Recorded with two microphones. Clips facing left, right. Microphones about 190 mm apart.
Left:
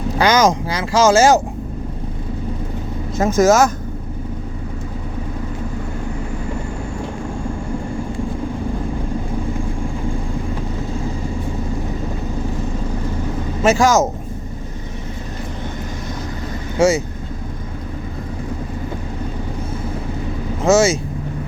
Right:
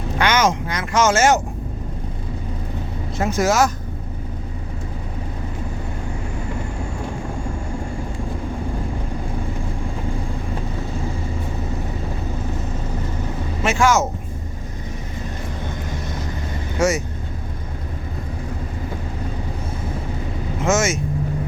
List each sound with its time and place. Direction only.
0.2 s speech: 35° left (ahead or behind)
3.2 s speech: 45° left (ahead or behind)
13.6 s speech: 40° left (ahead or behind)
16.7 s speech: 30° left (ahead or behind)
20.7 s speech: 35° left (ahead or behind)